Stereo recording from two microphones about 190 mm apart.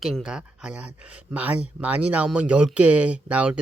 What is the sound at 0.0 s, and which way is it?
Speech, centre (ahead or behind).